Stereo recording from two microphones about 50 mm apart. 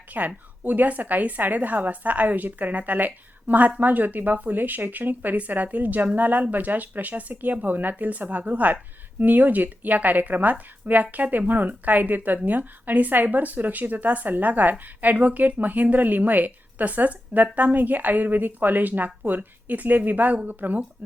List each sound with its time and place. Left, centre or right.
0.1 s speech: right